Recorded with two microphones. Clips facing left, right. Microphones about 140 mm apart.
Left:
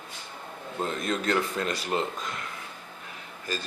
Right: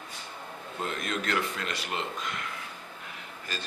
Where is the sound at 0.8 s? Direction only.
35° left (ahead or behind).